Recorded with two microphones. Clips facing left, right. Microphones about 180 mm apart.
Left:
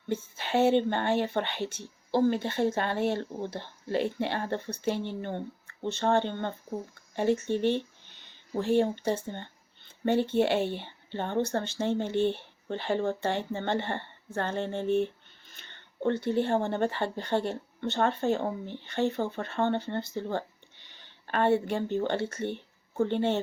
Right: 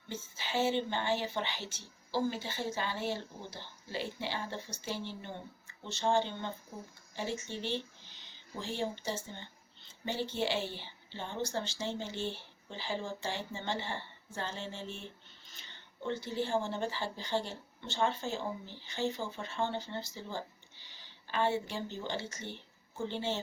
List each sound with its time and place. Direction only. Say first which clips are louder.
0.1 s speech: left 8 dB; 55° left (ahead or behind)